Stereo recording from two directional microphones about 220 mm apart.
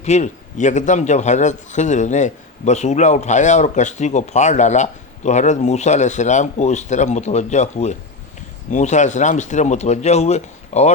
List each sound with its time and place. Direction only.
0.0 s a man's voice: 30° left (ahead or behind)